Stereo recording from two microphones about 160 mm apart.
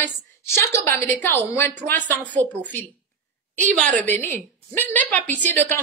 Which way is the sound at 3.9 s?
10° left (ahead or behind).